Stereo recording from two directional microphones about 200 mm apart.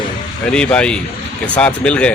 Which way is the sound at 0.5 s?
5° left (ahead or behind).